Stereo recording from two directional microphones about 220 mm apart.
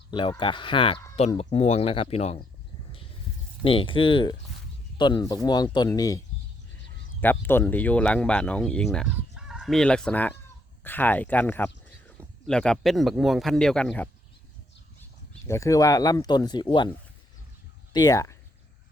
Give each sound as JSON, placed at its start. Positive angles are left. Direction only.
{"t": 0.1, "sound": "speech", "side_deg": 20}
{"t": 3.6, "sound": "speech", "side_deg": 25}
{"t": 7.2, "sound": "speech", "side_deg": 10}
{"t": 9.1, "sound": "chicken", "side_deg": -5}
{"t": 10.8, "sound": "speech", "side_deg": 10}
{"t": 15.3, "sound": "speech", "side_deg": 15}
{"t": 17.9, "sound": "speech", "side_deg": 15}